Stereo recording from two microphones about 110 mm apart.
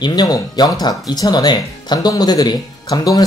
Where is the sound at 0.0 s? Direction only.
40° left (ahead or behind).